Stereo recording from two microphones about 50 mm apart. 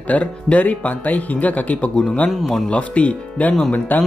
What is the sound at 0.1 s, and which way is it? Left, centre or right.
Speech, left.